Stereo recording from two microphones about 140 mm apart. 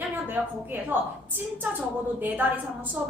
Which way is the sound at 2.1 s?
15° right (ahead or behind).